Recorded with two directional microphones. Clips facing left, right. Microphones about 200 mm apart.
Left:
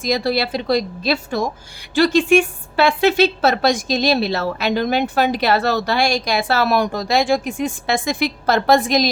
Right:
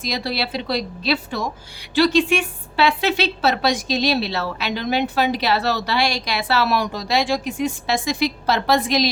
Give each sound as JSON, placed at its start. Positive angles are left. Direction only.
{"t": 0.0, "sound": "a woman's voice", "side_deg": 50}